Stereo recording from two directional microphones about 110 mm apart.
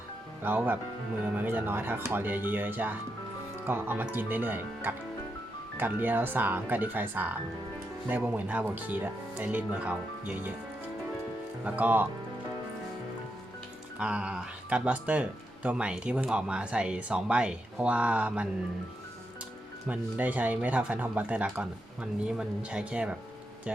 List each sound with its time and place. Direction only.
0.4 s speech: 15° right (ahead or behind)
11.6 s speech: 15° right (ahead or behind)
14.0 s speech: 10° right (ahead or behind)
19.9 s speech: 15° right (ahead or behind)